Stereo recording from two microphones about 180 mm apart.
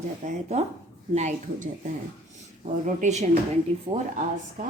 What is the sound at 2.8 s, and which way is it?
Speech, 40° right (ahead or behind).